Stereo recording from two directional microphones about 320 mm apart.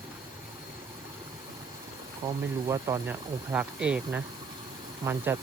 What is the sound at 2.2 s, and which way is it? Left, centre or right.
Speech, centre.